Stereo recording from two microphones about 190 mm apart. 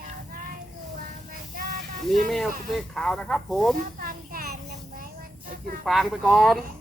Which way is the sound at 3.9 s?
50° right (ahead or behind).